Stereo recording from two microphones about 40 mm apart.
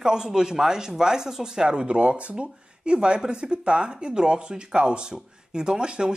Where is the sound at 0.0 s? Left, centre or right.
Centre.